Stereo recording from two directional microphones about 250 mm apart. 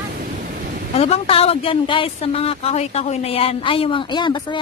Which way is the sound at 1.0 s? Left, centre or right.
Left.